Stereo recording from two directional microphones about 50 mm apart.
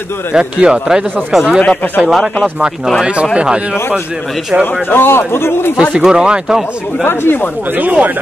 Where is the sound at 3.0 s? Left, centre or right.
Right.